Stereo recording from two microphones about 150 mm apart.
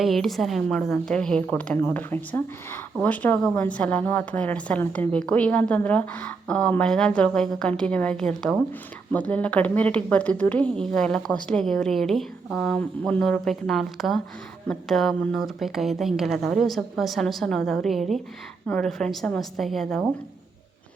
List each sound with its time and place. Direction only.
0.0 s a woman's voice: centre (ahead or behind)